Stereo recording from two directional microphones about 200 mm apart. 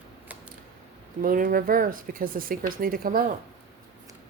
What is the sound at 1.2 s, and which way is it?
Speech, 45° right (ahead or behind).